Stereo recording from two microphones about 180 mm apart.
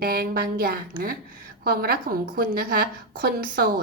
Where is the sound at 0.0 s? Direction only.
60° right (ahead or behind).